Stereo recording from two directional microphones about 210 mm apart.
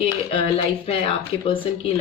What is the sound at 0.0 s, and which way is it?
Speech, 25° left (ahead or behind).